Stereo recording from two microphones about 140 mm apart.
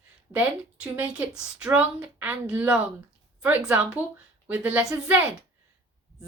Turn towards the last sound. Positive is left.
turn(degrees=-10)  # may be behind; listen again after turning